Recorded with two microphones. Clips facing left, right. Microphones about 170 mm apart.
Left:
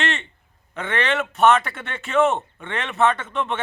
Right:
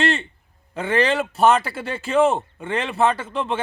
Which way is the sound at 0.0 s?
35° right (ahead or behind).